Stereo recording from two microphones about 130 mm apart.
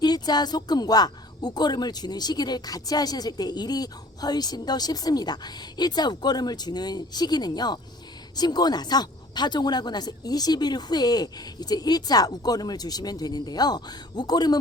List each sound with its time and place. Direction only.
0.0 s speech: 30° left (ahead or behind)